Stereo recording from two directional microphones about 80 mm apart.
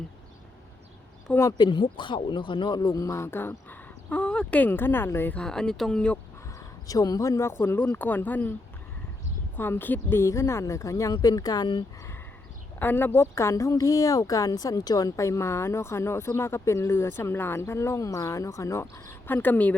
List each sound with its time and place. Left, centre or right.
1.5 s speech: left
3.7 s speech: centre
5.3 s speech: centre
6.8 s speech: left
9.6 s speech: left
12.8 s speech: left
13.1 s speech: left